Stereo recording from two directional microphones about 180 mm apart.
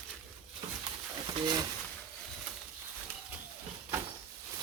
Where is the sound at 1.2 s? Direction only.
25° right (ahead or behind).